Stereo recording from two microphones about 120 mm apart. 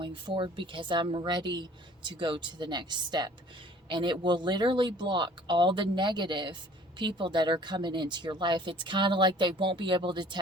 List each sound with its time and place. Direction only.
0.0 s speech: 45° right (ahead or behind)